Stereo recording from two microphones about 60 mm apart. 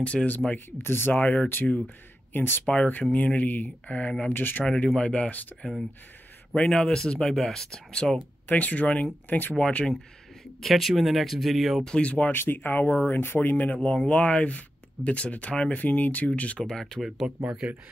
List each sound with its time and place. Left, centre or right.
0.0 s speech: left
0.7 s speech: left
2.3 s speech: left
2.6 s speech: centre
4.3 s speech: left
4.9 s speech: centre
5.6 s speech: centre
8.5 s speech: left
10.6 s speech: centre
11.8 s speech: centre
12.3 s speech: left
16.5 s speech: centre
17.4 s speech: centre